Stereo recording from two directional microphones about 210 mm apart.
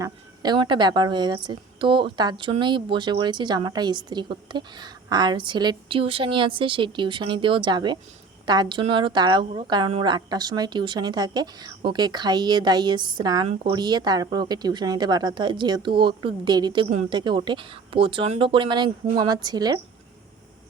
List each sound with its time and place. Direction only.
0.0 s a woman's voice: 20° right (ahead or behind)